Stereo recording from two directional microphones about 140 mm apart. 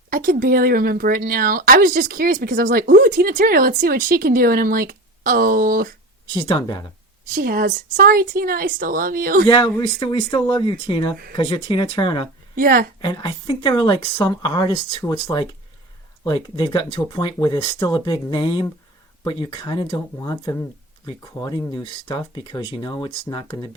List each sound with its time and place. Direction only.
0.1 s speech: 90° right
6.3 s speech: 35° left (ahead or behind)
7.3 s speech: 90° right
9.5 s speech: 35° left (ahead or behind)
12.5 s speech: 90° right
13.0 s speech: 35° left (ahead or behind)